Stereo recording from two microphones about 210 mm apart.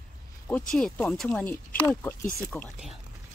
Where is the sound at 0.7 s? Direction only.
5° left (ahead or behind).